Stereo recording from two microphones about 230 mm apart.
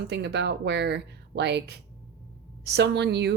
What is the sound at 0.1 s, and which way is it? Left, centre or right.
A woman's voice, right.